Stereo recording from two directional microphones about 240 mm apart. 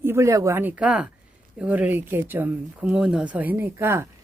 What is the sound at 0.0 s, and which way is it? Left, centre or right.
Speech, centre.